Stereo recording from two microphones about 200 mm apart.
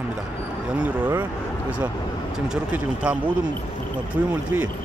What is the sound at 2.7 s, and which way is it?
Speech, 5° right (ahead or behind).